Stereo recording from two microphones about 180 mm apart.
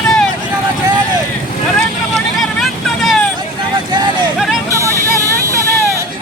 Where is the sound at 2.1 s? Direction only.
Centre (ahead or behind).